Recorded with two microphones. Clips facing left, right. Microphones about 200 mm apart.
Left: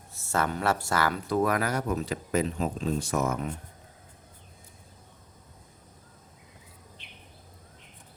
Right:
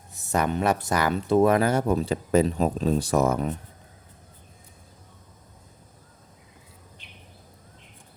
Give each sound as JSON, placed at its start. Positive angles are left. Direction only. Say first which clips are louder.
{"t": 0.1, "sound": "speech", "louder": "right 4 dB", "side_deg": -15}